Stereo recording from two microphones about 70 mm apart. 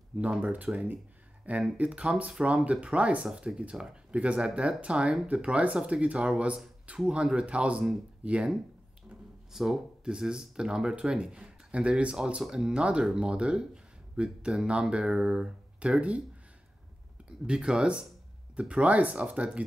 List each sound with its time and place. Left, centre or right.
0.4 s speech: right
9.5 s speech: centre
17.5 s speech: centre